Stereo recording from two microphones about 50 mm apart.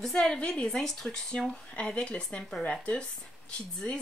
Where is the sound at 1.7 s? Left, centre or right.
Left.